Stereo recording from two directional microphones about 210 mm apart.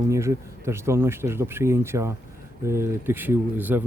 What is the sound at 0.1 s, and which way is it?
Speech, 15° right (ahead or behind).